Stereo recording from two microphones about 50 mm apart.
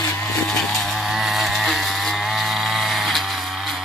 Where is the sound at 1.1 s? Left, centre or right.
Centre.